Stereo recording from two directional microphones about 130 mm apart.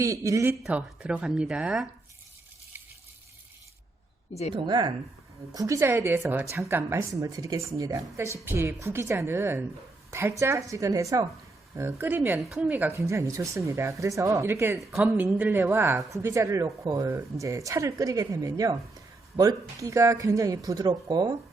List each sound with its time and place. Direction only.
0.0 s a woman's voice: 25° right (ahead or behind)
0.6 s speech: 10° right (ahead or behind)
4.5 s a woman's voice: 35° right (ahead or behind); by 14.8 s 20° right (ahead or behind)
14.8 s a woman's voice: centre (ahead or behind)
15.2 s a woman's voice: 15° right (ahead or behind); by 21.3 s 35° right (ahead or behind)